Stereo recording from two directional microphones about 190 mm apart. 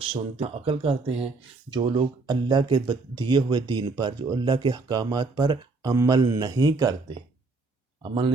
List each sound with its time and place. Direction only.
0.0 s speech: 30° right (ahead or behind)